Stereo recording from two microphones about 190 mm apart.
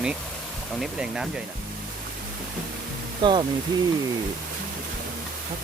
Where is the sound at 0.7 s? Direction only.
5° right (ahead or behind).